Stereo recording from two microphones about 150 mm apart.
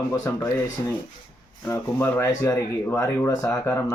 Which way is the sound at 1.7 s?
15° left (ahead or behind).